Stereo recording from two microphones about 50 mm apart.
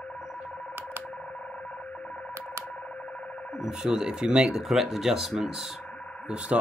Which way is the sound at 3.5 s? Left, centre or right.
Centre.